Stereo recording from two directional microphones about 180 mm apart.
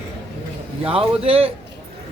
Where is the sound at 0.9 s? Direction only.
30° right (ahead or behind).